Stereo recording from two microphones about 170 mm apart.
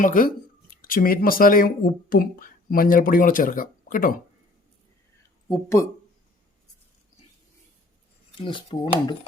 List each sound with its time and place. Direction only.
0.0 s speech: 55° left (ahead or behind)
8.4 s speech: 30° left (ahead or behind)